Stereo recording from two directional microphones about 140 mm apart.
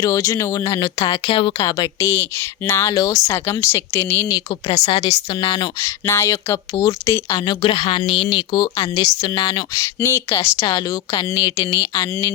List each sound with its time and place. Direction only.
0.0 s speech: 20° left (ahead or behind)
0.9 s a woman's voice: 35° left (ahead or behind); by 4.4 s 15° left (ahead or behind)
5.1 s a woman's voice: 30° left (ahead or behind)
6.1 s speech: 20° left (ahead or behind)
9.8 s speech: 20° left (ahead or behind)